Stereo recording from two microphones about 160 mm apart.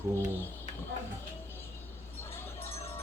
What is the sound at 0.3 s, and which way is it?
Speech, 15° left (ahead or behind).